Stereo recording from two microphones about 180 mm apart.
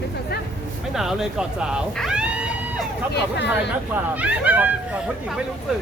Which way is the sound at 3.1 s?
70° left (ahead or behind).